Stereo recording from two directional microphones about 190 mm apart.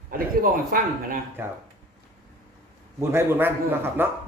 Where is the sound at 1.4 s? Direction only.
10° right (ahead or behind).